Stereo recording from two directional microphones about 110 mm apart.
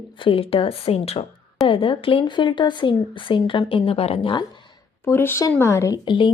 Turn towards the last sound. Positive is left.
turn(degrees=50)  # may be behind; listen again after turning